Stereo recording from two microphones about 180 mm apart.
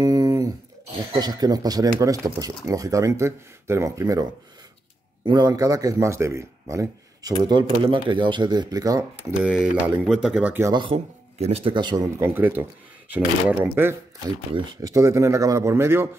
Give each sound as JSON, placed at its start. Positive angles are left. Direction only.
{"t": 0.0, "sound": "a sound", "side_deg": -20}
{"t": 1.2, "sound": "a man's voice", "side_deg": -20}
{"t": 9.4, "sound": "speech", "side_deg": -5}
{"t": 10.7, "sound": "a man's voice", "side_deg": -30}
{"t": 14.5, "sound": "speech", "side_deg": -20}